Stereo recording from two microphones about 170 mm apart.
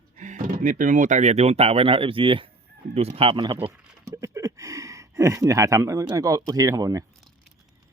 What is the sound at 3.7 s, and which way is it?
Speech, 15° right (ahead or behind).